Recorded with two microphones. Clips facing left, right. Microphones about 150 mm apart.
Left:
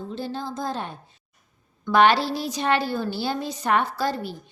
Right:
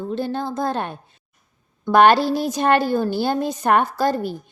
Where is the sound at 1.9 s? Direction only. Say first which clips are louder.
Right 4 dB; 50° right (ahead or behind).